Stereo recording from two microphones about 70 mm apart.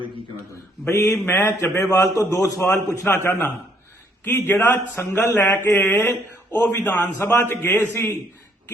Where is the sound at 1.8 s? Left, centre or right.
Left.